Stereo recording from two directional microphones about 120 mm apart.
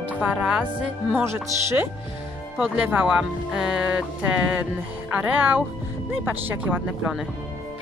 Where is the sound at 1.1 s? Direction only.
20° right (ahead or behind).